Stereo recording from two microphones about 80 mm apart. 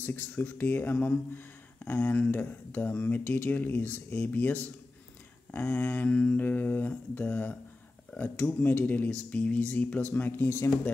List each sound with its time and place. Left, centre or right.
0.0 s speech: left